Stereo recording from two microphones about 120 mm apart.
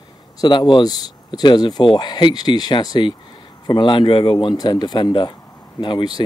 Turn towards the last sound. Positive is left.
turn(degrees=40)  # may be behind; listen again after turning